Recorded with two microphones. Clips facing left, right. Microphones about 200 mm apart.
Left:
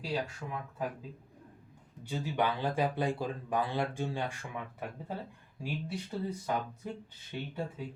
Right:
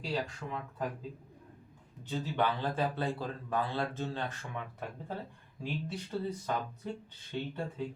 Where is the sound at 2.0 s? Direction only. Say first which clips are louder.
Even; 10° left (ahead or behind).